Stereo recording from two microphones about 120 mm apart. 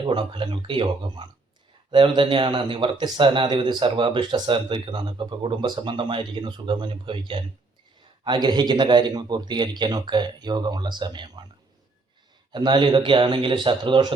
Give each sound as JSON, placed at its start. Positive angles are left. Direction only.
{"t": 0.0, "sound": "a man's voice", "side_deg": -40}
{"t": 12.5, "sound": "a man's voice", "side_deg": -40}